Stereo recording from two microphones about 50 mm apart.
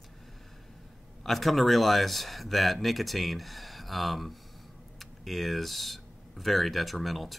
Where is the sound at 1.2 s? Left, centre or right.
Centre.